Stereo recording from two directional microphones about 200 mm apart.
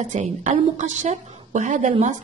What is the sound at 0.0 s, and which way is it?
A woman's voice, 35° right (ahead or behind).